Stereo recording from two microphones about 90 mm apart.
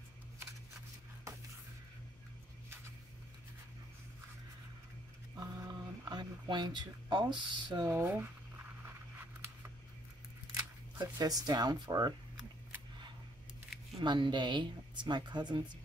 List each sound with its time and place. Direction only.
5.4 s speech: 45° right (ahead or behind)
7.9 s speech: 25° right (ahead or behind)
8.8 s a sound: 25° right (ahead or behind)
11.0 s speech: 45° right (ahead or behind)
14.0 s a woman's voice: 55° right (ahead or behind)